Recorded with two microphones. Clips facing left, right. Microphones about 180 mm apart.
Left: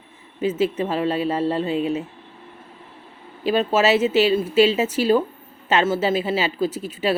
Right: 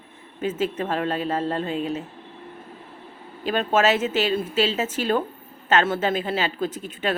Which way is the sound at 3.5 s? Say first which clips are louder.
Left 2 dB; 5° left (ahead or behind).